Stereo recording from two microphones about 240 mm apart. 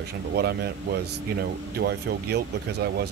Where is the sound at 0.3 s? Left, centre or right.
Right.